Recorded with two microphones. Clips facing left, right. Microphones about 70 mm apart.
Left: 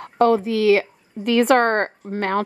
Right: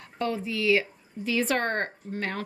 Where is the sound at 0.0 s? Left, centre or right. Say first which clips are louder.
Left 13 dB; left.